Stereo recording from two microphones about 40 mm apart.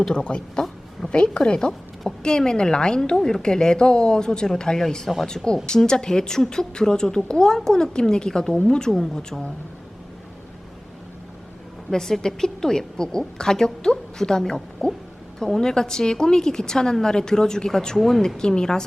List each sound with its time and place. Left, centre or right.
0.1 s a woman's voice: left
8.9 s a woman's voice: centre
11.9 s a woman's voice: centre
18.3 s a woman's voice: centre